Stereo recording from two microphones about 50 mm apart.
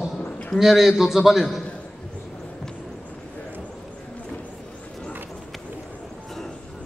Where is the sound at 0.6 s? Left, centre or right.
Centre.